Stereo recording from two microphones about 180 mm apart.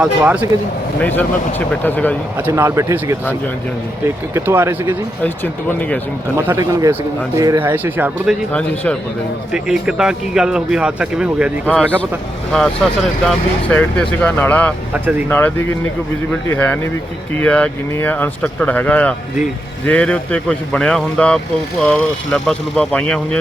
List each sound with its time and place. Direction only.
0.0 s speech: 5° right (ahead or behind)
1.0 s speech: 10° left (ahead or behind)
2.5 s speech: 15° right (ahead or behind)
4.4 s speech: 15° right (ahead or behind)
5.2 s speech: 10° left (ahead or behind)
6.3 s speech: 15° right (ahead or behind)
8.5 s speech: 5° left (ahead or behind)
9.5 s speech: 5° right (ahead or behind)
11.6 s speech: 5° left (ahead or behind)